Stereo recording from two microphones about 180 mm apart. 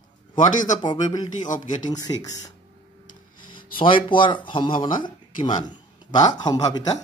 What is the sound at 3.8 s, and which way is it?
A man's voice, 30° left (ahead or behind).